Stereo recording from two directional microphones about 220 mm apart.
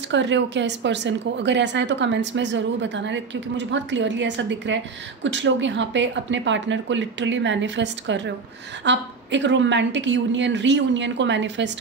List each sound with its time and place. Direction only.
0.1 s a woman's voice: 55° right (ahead or behind)